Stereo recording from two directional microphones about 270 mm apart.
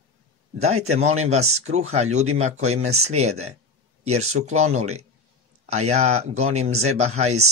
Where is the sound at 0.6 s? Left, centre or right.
Right.